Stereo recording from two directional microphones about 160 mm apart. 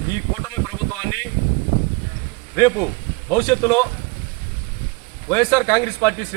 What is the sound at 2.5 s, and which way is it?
A man's voice, 15° left (ahead or behind).